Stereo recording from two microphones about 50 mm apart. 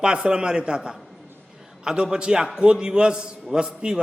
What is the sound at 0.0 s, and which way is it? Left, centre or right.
A man's voice, centre.